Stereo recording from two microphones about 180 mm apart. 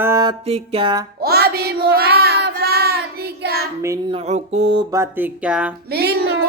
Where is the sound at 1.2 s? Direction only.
60° right (ahead or behind).